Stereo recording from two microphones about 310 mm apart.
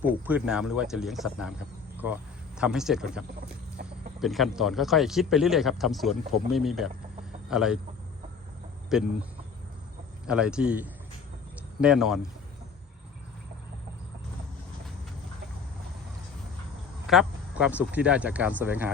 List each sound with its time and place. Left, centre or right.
0.0 s speech: centre
2.6 s speech: centre
3.8 s chicken: right
4.2 s speech: centre
8.9 s speech: centre
10.2 s speech: centre
17.1 s speech: centre